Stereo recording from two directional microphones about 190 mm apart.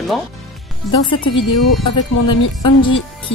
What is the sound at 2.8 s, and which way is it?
Speech, 25° left (ahead or behind).